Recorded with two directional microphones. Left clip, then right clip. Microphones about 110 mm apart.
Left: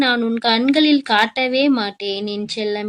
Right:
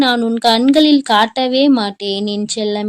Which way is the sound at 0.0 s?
25° right (ahead or behind).